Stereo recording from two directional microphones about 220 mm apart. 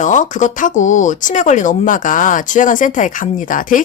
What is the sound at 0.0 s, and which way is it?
Speech, 35° left (ahead or behind).